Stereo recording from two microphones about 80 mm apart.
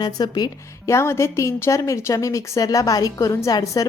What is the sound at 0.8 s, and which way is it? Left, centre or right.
A woman's voice, left.